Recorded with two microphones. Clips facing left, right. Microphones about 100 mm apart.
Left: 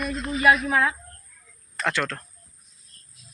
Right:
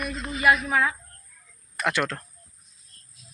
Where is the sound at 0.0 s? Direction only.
Centre (ahead or behind).